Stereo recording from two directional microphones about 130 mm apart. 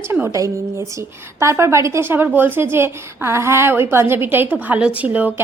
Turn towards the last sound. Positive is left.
turn(degrees=-10)  # may be behind; listen again after turning